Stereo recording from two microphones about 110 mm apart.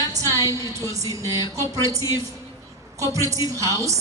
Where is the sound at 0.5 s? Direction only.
30° right (ahead or behind).